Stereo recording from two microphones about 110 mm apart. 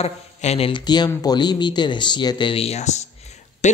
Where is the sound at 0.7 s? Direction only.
40° left (ahead or behind); by 3.8 s 90° left.